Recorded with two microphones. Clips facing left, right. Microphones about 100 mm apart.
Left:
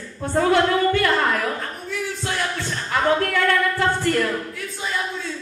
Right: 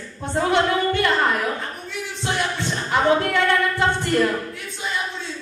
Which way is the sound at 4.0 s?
20° right (ahead or behind).